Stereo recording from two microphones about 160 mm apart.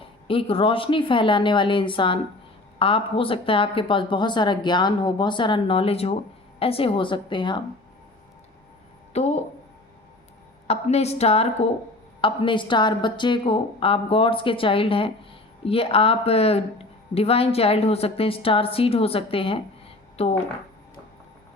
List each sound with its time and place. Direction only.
0.0 s a woman's voice: 35° left (ahead or behind)
9.1 s speech: 45° left (ahead or behind)
10.7 s a woman's voice: 40° left (ahead or behind)